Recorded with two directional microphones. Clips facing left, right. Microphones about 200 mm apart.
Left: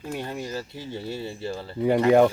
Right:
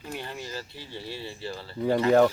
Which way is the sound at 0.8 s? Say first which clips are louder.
Left 6 dB; 45° left (ahead or behind).